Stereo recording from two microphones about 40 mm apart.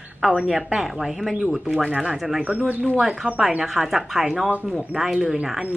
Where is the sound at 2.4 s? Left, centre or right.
Right.